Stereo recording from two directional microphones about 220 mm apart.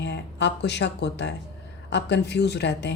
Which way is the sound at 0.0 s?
50° left (ahead or behind).